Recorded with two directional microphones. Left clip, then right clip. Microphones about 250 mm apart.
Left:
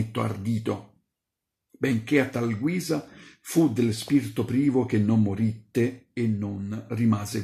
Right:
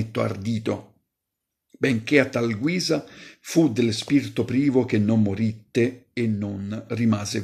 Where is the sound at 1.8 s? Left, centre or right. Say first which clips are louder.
Right 4 dB; centre.